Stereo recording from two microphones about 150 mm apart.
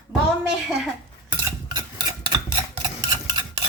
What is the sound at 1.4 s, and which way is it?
Stir, 20° right (ahead or behind).